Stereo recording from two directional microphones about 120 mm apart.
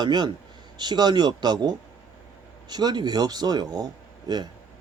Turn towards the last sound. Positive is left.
turn(degrees=-35)  # may be behind; listen again after turning